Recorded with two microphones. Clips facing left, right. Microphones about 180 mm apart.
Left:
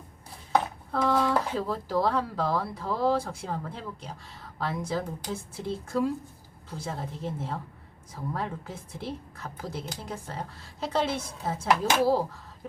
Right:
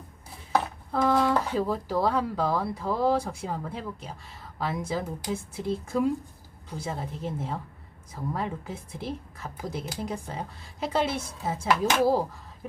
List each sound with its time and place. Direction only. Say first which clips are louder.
0.5 s a woman's voice: even; 10° right (ahead or behind)